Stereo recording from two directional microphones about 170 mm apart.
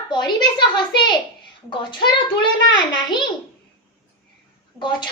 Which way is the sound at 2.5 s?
25° left (ahead or behind).